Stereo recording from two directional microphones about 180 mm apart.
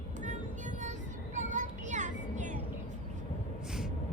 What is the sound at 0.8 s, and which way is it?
Child singing, 40° right (ahead or behind).